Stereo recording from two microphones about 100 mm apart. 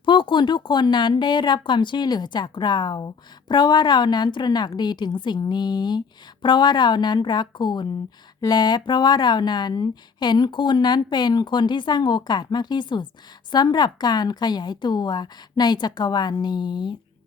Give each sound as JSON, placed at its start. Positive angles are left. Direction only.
{"t": 0.0, "sound": "speech", "side_deg": 55}